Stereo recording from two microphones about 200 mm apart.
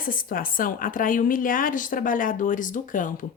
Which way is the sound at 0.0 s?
45° left (ahead or behind).